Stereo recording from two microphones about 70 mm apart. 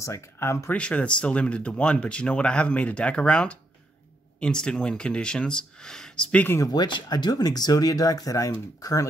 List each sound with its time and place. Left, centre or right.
0.0 s speech: left
0.7 s speech: centre
6.6 s speech: left